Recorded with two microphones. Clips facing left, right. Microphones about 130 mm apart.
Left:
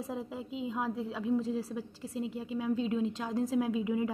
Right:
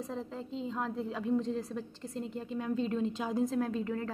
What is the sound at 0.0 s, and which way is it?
A woman's voice, 5° left (ahead or behind).